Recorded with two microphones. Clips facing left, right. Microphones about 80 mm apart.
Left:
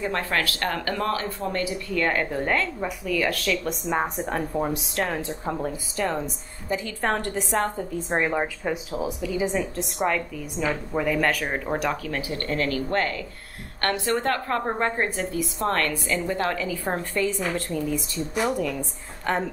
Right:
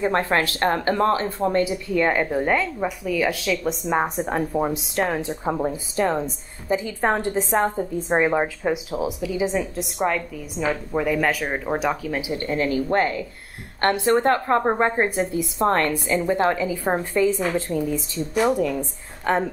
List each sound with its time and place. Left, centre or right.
0.0 s a woman's voice: right; by 10.2 s centre
10.6 s a woman's voice: centre
10.9 s a woman's voice: centre
18.1 s a woman's voice: centre
18.8 s a woman's voice: centre